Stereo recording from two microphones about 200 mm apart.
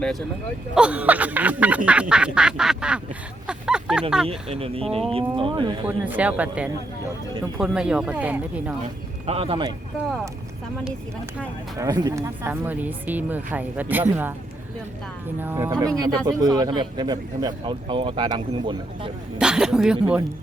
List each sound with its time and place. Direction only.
0.7 s quack: 5° right (ahead or behind)
3.4 s a sound: 5° right (ahead or behind)
4.3 s speech: 30° right (ahead or behind)
6.1 s speech: 5° right (ahead or behind)
7.6 s quack: 5° right (ahead or behind)
9.2 s speech: 30° right (ahead or behind)
11.8 s speech: 20° right (ahead or behind)
15.4 s speech: 10° right (ahead or behind)
19.4 s quack: 5° right (ahead or behind)